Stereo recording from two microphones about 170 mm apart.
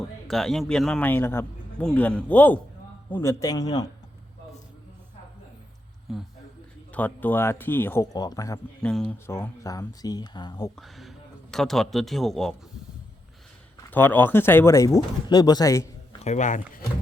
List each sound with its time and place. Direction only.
0.3 s a man's voice: centre (ahead or behind); by 3.8 s 20° left (ahead or behind)
6.1 s a man's voice: centre (ahead or behind)
6.9 s a man's voice: 10° left (ahead or behind)
8.8 s a man's voice: 5° left (ahead or behind)
9.1 s speech: 15° left (ahead or behind)
10.8 s a man's voice: centre (ahead or behind)
13.9 s a man's voice: 10° left (ahead or behind)
16.2 s speech: 45° left (ahead or behind)